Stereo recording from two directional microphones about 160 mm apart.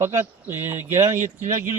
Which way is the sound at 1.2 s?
50° right (ahead or behind).